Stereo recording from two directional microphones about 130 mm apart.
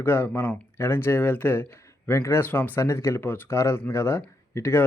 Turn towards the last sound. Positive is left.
turn(degrees=20)  # may be behind; listen again after turning